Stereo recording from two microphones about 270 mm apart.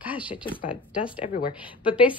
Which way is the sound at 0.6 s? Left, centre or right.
Centre.